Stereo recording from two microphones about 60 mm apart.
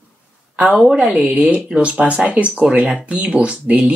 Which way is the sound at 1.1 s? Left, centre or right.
Right.